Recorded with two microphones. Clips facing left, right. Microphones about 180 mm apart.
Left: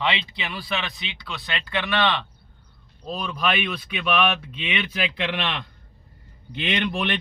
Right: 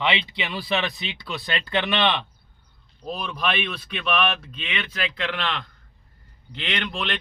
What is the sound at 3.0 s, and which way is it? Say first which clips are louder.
Speech: left 1 dB; centre (ahead or behind).